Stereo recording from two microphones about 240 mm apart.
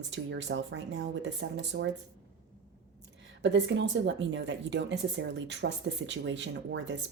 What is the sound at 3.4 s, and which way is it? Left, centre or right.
A woman's voice, right.